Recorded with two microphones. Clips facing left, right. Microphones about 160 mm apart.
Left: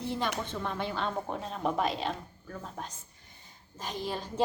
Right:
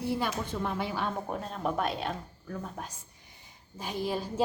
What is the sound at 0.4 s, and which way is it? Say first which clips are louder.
A woman's voice: right 2 dB; 10° right (ahead or behind).